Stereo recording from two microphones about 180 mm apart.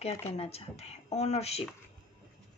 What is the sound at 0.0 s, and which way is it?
A woman's voice, 35° left (ahead or behind).